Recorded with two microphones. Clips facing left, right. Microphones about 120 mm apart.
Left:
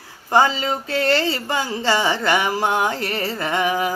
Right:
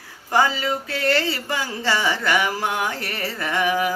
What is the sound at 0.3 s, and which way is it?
Speech, 30° left (ahead or behind).